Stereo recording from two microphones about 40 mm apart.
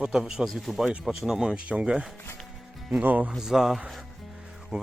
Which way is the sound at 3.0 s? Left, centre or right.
Right.